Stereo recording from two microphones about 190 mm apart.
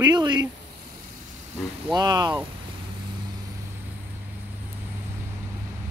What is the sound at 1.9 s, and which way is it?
Speech, 20° right (ahead or behind).